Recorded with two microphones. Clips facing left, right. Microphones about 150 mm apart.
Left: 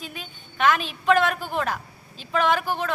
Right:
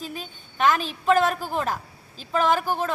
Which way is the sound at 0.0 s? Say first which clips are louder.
Right 3 dB; 40° right (ahead or behind).